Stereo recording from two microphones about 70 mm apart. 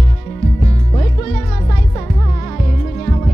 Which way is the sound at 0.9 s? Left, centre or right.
Left.